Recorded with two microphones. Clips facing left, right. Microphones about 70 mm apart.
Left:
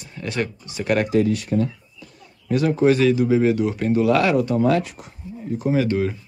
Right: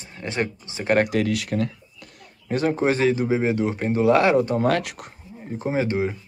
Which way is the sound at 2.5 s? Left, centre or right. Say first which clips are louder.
Left 4 dB; right.